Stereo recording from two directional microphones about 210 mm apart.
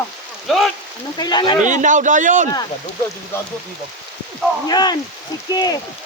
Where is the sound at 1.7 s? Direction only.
35° right (ahead or behind).